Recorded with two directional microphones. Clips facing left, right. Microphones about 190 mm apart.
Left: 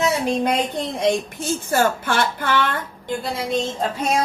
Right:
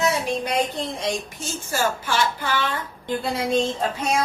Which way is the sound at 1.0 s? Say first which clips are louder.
Left 7 dB; 55° left (ahead or behind).